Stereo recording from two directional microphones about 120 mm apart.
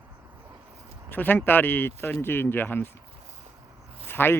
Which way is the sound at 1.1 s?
15° left (ahead or behind).